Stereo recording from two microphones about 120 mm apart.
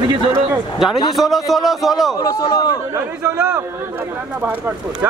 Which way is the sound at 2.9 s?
25° right (ahead or behind).